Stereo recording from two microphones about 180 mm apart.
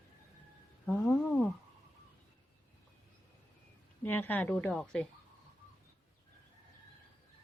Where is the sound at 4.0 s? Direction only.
10° left (ahead or behind).